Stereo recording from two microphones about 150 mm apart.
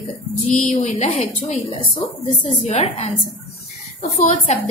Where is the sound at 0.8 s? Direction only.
50° left (ahead or behind).